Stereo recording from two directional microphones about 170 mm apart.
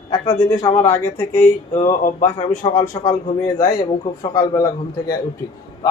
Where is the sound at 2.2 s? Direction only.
30° left (ahead or behind).